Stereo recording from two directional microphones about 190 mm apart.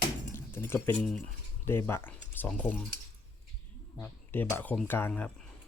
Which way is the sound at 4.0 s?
10° left (ahead or behind).